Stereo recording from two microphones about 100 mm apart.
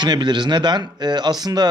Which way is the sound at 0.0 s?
50° right (ahead or behind).